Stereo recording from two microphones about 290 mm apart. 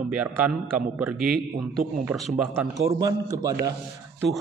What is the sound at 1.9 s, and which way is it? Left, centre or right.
A man's voice, centre.